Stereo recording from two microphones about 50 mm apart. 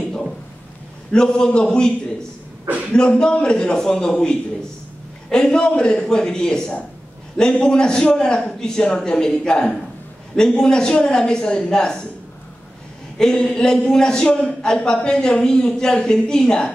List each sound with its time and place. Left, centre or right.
1.1 s a man's voice: centre
2.9 s a man's voice: centre
13.2 s a man's voice: centre